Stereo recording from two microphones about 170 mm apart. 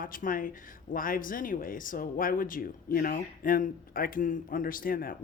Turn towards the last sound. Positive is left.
turn(degrees=60)  # may be behind; listen again after turning